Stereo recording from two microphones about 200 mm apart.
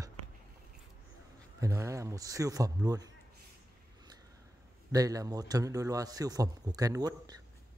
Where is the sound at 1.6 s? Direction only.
15° right (ahead or behind).